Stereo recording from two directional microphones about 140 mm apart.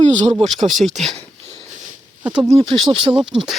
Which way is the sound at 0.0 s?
55° right (ahead or behind).